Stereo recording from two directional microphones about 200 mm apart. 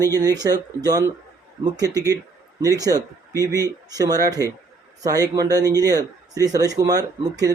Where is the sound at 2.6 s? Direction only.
15° right (ahead or behind).